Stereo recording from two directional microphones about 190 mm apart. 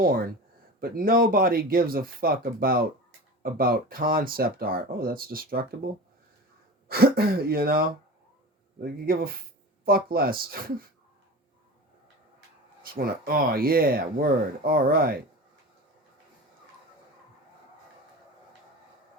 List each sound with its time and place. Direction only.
0.0 s speech: 50° right (ahead or behind)
12.8 s speech: 50° right (ahead or behind)